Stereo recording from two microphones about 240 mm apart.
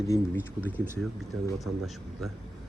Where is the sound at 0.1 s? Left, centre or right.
Centre.